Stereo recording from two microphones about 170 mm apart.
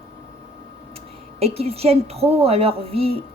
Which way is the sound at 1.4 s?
35° right (ahead or behind).